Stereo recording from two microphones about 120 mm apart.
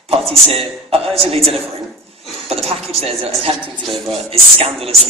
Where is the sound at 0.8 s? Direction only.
55° right (ahead or behind).